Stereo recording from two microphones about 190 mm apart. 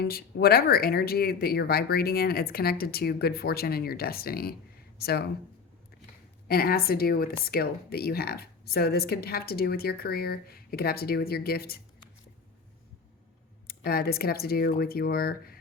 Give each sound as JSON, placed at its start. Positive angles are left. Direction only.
{"t": 0.0, "sound": "speech", "side_deg": 55}
{"t": 6.5, "sound": "speech", "side_deg": 55}
{"t": 13.7, "sound": "speech", "side_deg": 50}